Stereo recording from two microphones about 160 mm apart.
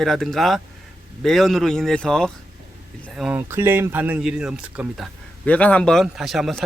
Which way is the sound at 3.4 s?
15° right (ahead or behind).